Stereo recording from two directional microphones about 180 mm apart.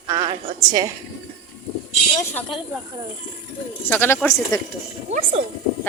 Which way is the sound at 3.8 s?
10° left (ahead or behind).